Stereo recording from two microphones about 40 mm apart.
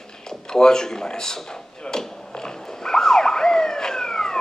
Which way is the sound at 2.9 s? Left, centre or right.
Centre.